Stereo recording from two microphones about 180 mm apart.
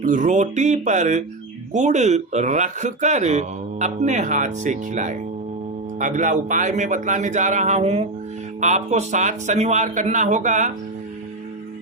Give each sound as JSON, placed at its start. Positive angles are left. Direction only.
{"t": 0.0, "sound": "speech", "side_deg": -45}